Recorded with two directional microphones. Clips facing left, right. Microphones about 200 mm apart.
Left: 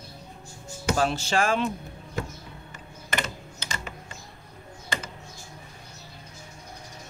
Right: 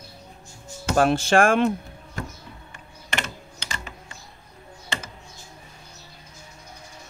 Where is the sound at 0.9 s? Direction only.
55° right (ahead or behind).